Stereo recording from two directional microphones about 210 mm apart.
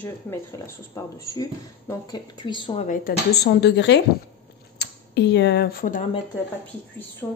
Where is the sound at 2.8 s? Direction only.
40° left (ahead or behind).